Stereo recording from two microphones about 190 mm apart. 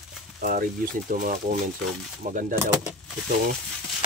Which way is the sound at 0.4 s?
45° right (ahead or behind).